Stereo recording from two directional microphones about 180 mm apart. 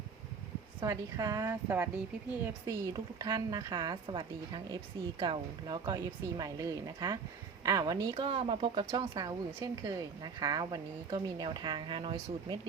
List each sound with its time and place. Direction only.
0.8 s speech: 20° right (ahead or behind)